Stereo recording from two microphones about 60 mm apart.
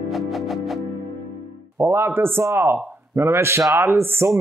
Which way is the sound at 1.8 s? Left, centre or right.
Right.